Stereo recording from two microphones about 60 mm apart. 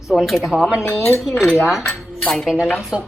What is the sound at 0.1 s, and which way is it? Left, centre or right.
Speech, centre.